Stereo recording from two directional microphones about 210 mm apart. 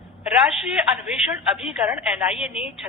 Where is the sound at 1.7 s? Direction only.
5° right (ahead or behind).